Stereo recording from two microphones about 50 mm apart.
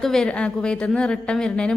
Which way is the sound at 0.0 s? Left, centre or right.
Centre.